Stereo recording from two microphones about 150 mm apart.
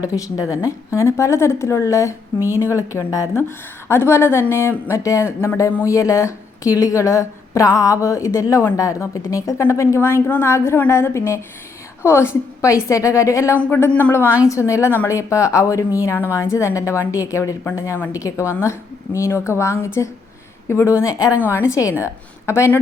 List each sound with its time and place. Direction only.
0.0 s a woman's voice: 25° left (ahead or behind)